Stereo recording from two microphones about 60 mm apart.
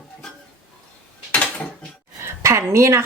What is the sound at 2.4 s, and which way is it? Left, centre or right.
Speech, right.